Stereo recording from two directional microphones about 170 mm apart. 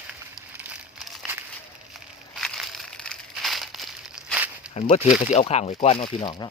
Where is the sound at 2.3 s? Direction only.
Centre (ahead or behind).